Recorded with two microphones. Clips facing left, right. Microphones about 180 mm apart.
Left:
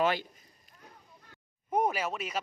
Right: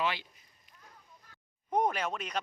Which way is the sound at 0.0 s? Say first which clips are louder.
Left 5 dB; 45° left (ahead or behind).